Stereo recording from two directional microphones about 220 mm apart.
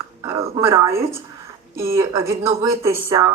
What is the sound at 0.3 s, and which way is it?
A woman's voice, 15° right (ahead or behind).